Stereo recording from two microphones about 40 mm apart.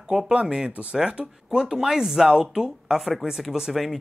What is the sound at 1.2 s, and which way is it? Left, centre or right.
Speech, right.